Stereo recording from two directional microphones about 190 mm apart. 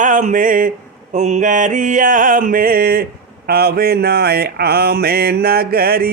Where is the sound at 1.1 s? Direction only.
40° right (ahead or behind).